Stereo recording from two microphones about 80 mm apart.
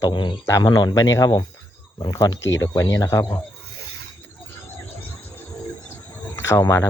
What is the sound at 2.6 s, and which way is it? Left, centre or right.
Speech, left.